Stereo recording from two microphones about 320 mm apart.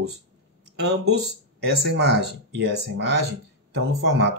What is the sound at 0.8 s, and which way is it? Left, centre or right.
Speech, right.